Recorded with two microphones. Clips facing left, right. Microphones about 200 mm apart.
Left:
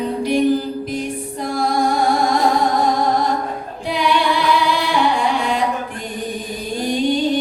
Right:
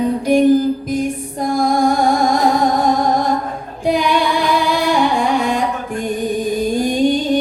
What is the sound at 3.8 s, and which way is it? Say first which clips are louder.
Singing: right 3 dB; 45° right (ahead or behind).